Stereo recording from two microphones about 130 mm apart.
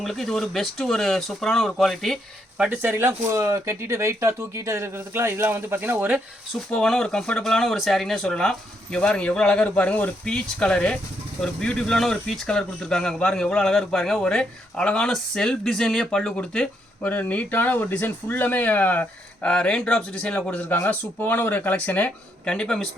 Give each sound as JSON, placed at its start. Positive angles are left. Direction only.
{"t": 0.0, "sound": "speech", "side_deg": 0}
{"t": 2.6, "sound": "speech", "side_deg": -15}
{"t": 6.7, "sound": "speech", "side_deg": 5}